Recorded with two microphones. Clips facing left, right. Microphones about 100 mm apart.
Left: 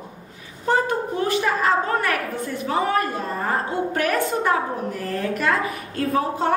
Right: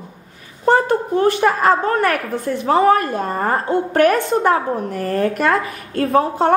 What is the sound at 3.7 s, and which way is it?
A woman's voice, 70° right (ahead or behind).